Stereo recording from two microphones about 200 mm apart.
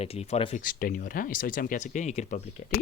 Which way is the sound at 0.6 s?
45° left (ahead or behind).